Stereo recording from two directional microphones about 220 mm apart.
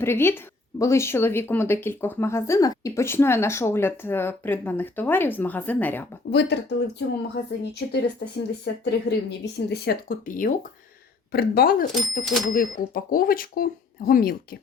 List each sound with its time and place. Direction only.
0.0 s a woman's voice: 10° left (ahead or behind)
6.3 s speech: 50° left (ahead or behind)
12.2 s speech: centre (ahead or behind)
12.5 s speech: 40° left (ahead or behind)